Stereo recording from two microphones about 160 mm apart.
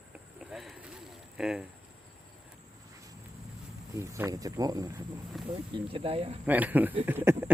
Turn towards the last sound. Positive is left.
turn(degrees=-15)  # may be behind; listen again after turning